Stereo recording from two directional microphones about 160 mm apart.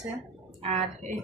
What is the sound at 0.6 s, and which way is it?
Speech, 40° right (ahead or behind).